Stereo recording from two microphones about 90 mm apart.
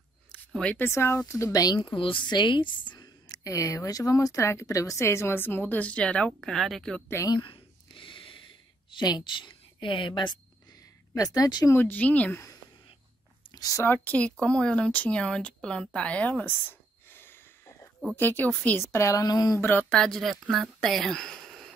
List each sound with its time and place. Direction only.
0.3 s a sound: 10° left (ahead or behind)
0.7 s a woman's voice: 25° left (ahead or behind); by 1.8 s 45° left (ahead or behind)
1.8 s a woman's voice: 75° left (ahead or behind); by 3.3 s 55° left (ahead or behind)
3.4 s a woman's voice: 40° left (ahead or behind); by 7.0 s 5° left (ahead or behind)
7.2 s a sound: 65° left (ahead or behind)
8.9 s a woman's voice: 55° left (ahead or behind)
11.1 s speech: 45° left (ahead or behind)
11.7 s speech: 20° left (ahead or behind)
13.5 s a sound: 40° left (ahead or behind)
14.0 s speech: 15° left (ahead or behind)
18.8 s a woman's voice: 30° left (ahead or behind)
19.6 s speech: 20° left (ahead or behind)
19.9 s speech: 5° left (ahead or behind)
20.8 s a sound: centre (ahead or behind)